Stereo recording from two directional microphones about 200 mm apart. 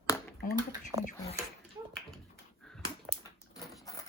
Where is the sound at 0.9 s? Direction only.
30° right (ahead or behind).